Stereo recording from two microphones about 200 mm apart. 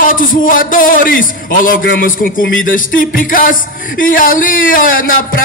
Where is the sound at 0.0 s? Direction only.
45° left (ahead or behind).